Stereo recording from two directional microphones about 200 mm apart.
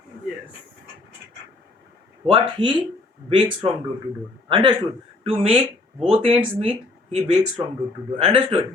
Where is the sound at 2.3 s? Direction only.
25° right (ahead or behind).